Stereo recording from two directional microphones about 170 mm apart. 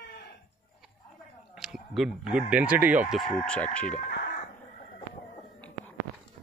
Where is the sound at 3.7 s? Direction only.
5° left (ahead or behind).